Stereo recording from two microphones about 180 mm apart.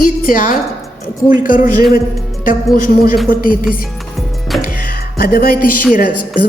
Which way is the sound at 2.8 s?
50° left (ahead or behind).